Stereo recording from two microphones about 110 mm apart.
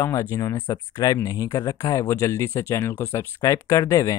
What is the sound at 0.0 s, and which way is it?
Speech, 25° left (ahead or behind).